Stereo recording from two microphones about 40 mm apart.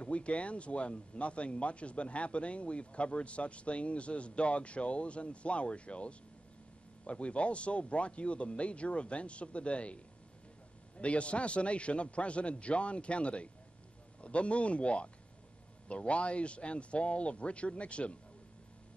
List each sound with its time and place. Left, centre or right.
0.0 s speech: left
11.0 s speech: left